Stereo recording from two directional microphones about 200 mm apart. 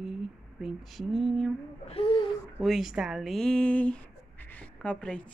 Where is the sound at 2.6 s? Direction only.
Centre (ahead or behind).